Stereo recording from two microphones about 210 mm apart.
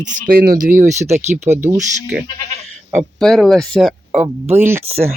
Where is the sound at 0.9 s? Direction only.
35° right (ahead or behind).